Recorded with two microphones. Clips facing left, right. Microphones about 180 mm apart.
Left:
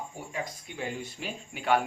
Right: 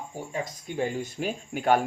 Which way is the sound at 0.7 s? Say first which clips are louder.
Right 7 dB; 45° right (ahead or behind).